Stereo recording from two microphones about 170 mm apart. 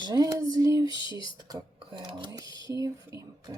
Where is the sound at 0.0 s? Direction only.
25° right (ahead or behind).